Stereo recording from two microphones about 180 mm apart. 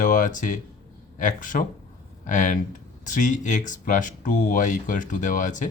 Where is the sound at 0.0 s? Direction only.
45° left (ahead or behind).